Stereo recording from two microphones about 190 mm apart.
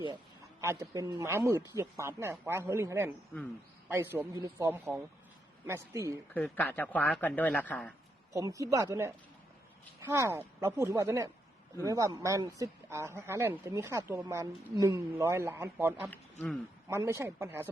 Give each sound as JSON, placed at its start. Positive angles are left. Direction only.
{"t": 0.6, "sound": "speech", "side_deg": -15}
{"t": 6.3, "sound": "speech", "side_deg": 10}
{"t": 8.3, "sound": "speech", "side_deg": -15}
{"t": 10.2, "sound": "speech", "side_deg": -15}
{"t": 16.0, "sound": "speech", "side_deg": 5}
{"t": 16.9, "sound": "speech", "side_deg": -15}